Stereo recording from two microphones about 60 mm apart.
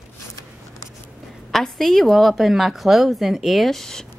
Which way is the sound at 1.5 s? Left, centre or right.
Centre.